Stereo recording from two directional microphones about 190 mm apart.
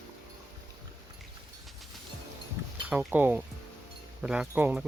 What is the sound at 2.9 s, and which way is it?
Speech, 5° right (ahead or behind).